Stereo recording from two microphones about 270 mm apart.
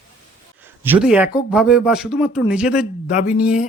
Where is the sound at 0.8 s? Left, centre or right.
Centre.